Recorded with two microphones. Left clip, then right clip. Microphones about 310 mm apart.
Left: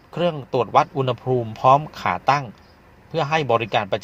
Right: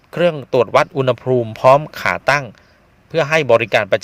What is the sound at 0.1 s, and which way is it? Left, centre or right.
A man's voice, right.